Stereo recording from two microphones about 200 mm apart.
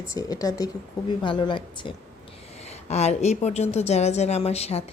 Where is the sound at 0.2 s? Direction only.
20° left (ahead or behind).